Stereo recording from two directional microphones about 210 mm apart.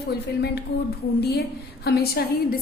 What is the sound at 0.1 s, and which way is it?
A woman's voice, 50° left (ahead or behind).